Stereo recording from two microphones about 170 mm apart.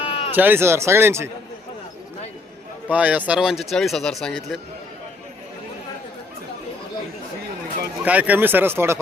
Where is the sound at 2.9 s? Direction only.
10° right (ahead or behind).